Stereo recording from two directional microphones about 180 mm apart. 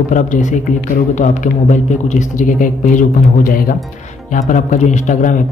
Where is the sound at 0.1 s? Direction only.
45° left (ahead or behind).